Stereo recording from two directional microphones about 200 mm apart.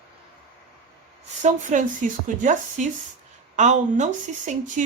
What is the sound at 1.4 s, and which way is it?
Speech, 40° right (ahead or behind).